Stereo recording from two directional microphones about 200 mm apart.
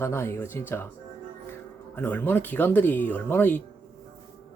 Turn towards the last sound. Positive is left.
turn(degrees=10)  # may be behind; listen again after turning